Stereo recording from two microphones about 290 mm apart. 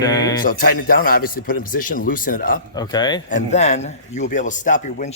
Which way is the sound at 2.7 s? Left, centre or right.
Centre.